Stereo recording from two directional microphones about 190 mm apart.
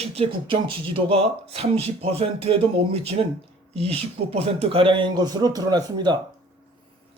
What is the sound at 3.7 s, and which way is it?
Speech, 30° right (ahead or behind).